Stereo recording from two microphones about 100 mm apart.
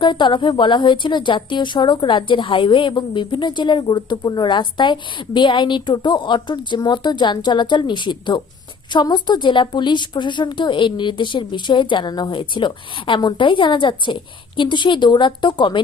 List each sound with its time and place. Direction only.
0.0 s speech: 50° left (ahead or behind)